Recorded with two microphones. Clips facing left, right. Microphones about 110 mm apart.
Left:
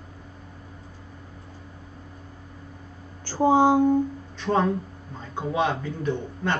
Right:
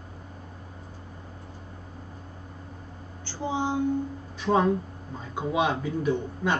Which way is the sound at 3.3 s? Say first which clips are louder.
Left 10 dB; 45° left (ahead or behind).